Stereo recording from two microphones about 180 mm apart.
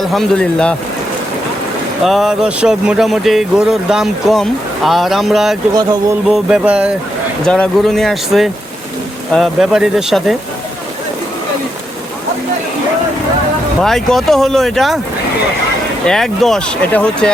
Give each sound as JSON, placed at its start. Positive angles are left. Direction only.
{"t": 0.1, "sound": "speech", "side_deg": 5}
{"t": 2.0, "sound": "speech", "side_deg": 0}
{"t": 5.7, "sound": "music", "side_deg": -20}
{"t": 6.2, "sound": "speech", "side_deg": -5}
{"t": 7.4, "sound": "speech", "side_deg": 5}
{"t": 13.8, "sound": "speech", "side_deg": 0}
{"t": 16.0, "sound": "speech", "side_deg": 0}